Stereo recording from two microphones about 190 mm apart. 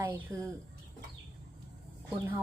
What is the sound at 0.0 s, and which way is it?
Speech, 10° right (ahead or behind).